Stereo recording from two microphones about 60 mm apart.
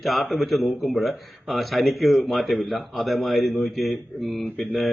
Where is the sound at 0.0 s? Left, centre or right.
Centre.